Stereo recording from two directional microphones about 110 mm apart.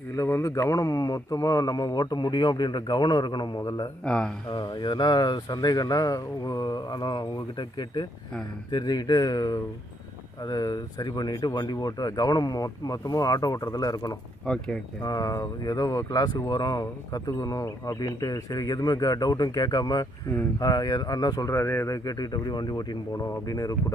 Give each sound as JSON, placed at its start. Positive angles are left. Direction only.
{"t": 0.1, "sound": "speech", "side_deg": 25}
{"t": 4.0, "sound": "speech", "side_deg": 10}
{"t": 4.5, "sound": "speech", "side_deg": 40}
{"t": 14.4, "sound": "speech", "side_deg": 5}
{"t": 15.0, "sound": "speech", "side_deg": 35}
{"t": 20.2, "sound": "speech", "side_deg": 25}
{"t": 20.6, "sound": "speech", "side_deg": 35}
{"t": 21.5, "sound": "speech", "side_deg": 20}